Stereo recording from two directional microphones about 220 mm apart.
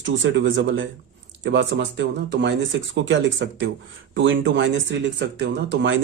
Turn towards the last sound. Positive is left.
turn(degrees=-50)  # may be behind; listen again after turning